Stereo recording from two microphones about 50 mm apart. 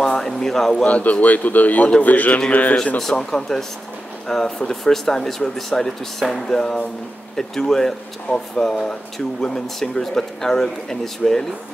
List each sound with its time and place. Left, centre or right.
0.0 s a sound: centre
0.8 s speech: left
3.0 s speech: centre